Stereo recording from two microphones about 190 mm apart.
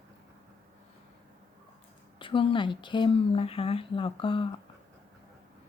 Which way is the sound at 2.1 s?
25° left (ahead or behind).